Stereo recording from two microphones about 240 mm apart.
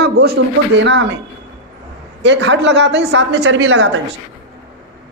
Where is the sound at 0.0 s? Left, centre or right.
Right.